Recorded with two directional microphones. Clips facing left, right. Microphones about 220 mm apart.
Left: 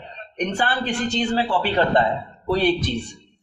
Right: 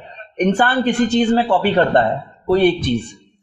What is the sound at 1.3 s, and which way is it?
Speech, 55° right (ahead or behind).